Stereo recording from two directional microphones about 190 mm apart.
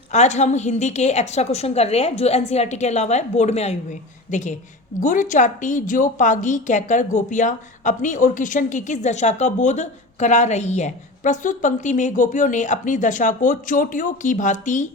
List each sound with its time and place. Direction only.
0.1 s a woman's voice: 35° left (ahead or behind)